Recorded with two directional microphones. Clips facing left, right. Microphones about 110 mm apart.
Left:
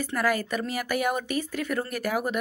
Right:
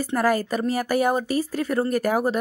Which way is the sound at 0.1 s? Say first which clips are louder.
Right 5 dB; 40° right (ahead or behind).